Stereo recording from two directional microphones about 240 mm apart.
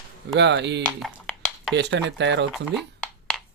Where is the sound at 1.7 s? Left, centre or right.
Right.